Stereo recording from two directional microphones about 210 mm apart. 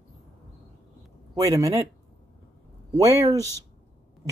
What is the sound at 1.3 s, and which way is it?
Speech, 15° right (ahead or behind).